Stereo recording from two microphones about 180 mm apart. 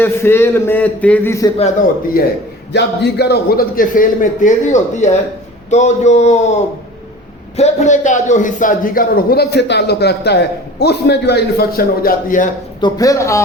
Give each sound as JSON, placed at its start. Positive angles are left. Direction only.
{"t": 0.0, "sound": "a man's voice", "side_deg": 15}
{"t": 2.2, "sound": "a man's voice", "side_deg": 55}
{"t": 2.7, "sound": "a man's voice", "side_deg": 70}
{"t": 12.8, "sound": "a man's voice", "side_deg": 20}